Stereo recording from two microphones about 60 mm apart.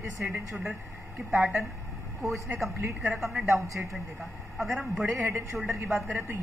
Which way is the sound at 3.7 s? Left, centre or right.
Right.